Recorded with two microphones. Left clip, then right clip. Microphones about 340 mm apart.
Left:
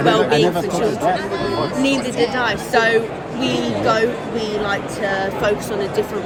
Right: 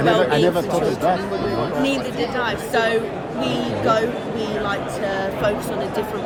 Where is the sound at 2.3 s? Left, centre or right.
Left.